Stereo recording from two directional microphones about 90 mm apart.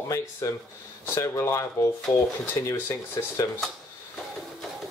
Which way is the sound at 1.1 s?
30° left (ahead or behind).